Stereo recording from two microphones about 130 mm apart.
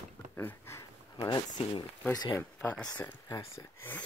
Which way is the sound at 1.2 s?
30° left (ahead or behind).